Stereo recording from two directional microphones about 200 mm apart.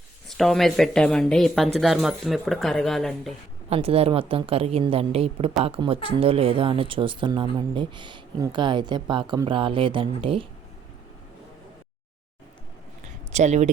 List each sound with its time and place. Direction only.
0.3 s speech: centre (ahead or behind)
3.7 s speech: 30° right (ahead or behind)
13.1 s a sound: 35° right (ahead or behind)